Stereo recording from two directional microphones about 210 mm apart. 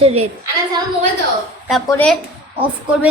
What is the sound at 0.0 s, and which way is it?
Speech, 30° right (ahead or behind).